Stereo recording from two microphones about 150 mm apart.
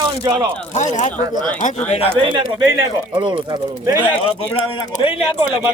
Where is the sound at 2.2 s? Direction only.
30° right (ahead or behind).